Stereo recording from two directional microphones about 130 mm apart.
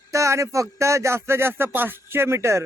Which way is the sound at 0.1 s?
25° right (ahead or behind).